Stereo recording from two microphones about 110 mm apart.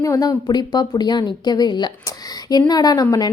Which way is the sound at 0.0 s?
30° left (ahead or behind).